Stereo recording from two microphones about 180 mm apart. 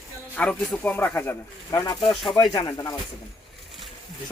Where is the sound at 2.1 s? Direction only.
Centre (ahead or behind).